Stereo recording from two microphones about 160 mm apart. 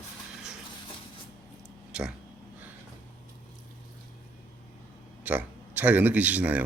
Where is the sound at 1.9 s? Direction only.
5° right (ahead or behind).